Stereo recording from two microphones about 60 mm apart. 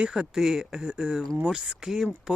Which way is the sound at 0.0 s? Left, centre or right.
Centre.